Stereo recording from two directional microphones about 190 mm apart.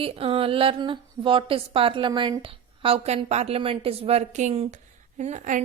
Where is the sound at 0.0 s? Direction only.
30° right (ahead or behind).